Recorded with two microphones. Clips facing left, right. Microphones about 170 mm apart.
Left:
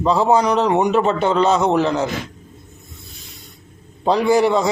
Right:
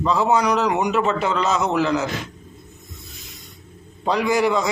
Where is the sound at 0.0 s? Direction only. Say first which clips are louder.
Left 3 dB; 30° left (ahead or behind).